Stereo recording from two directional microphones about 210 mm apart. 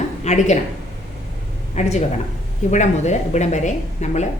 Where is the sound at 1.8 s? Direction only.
35° left (ahead or behind).